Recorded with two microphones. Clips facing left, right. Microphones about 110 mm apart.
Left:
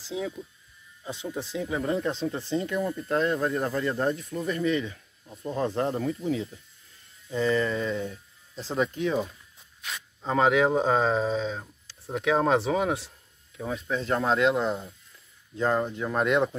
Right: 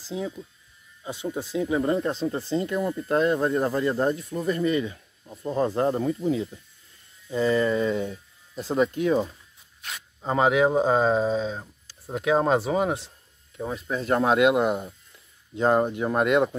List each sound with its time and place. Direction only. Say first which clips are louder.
0.0 s speech: right 1 dB; centre (ahead or behind)
2.8 s speech: right 4 dB; 20° right (ahead or behind)
8.7 s speech: right 4 dB; 5° right (ahead or behind)
10.2 s speech: right 1 dB; 5° right (ahead or behind)